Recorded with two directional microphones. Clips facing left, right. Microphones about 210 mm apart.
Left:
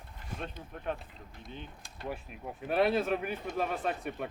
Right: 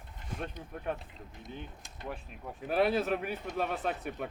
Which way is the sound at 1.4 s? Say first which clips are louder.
Right 1 dB; 20° right (ahead or behind).